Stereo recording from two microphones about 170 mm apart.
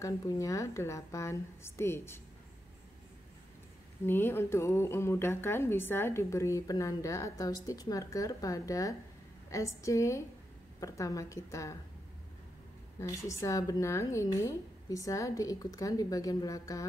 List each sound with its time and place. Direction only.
0.0 s a woman's voice: 20° left (ahead or behind)
4.0 s a woman's voice: 15° left (ahead or behind)
13.0 s speech: 15° left (ahead or behind)